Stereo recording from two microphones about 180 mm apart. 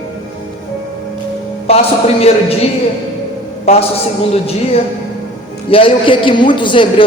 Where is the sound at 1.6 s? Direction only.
35° left (ahead or behind).